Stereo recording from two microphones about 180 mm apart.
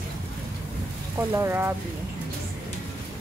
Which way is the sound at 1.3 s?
10° right (ahead or behind).